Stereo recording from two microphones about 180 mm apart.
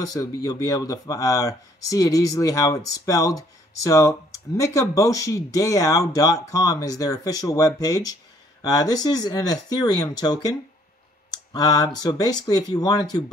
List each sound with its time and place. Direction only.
0.0 s speech: 20° left (ahead or behind)
11.5 s speech: 20° left (ahead or behind)